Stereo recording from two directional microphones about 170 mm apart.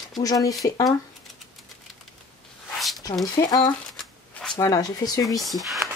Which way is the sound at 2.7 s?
Centre (ahead or behind).